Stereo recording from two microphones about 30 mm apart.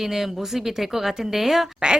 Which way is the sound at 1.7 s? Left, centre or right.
Right.